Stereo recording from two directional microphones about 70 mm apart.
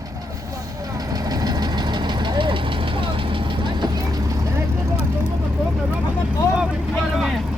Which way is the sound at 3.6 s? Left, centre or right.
Right.